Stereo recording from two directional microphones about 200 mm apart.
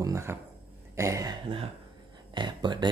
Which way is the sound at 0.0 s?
15° right (ahead or behind).